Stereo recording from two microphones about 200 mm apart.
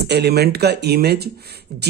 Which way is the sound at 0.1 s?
55° right (ahead or behind).